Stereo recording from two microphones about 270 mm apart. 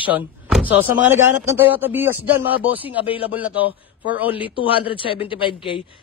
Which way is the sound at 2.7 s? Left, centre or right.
Centre.